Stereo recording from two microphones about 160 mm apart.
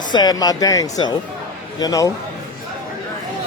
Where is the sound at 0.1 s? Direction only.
25° left (ahead or behind).